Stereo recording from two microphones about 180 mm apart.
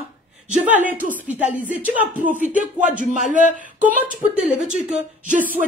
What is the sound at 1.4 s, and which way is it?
Speech, 45° right (ahead or behind).